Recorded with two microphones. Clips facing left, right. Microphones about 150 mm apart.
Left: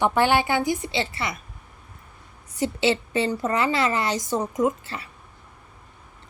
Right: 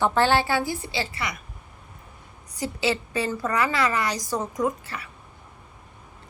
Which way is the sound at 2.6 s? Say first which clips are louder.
Left 3 dB; 25° left (ahead or behind).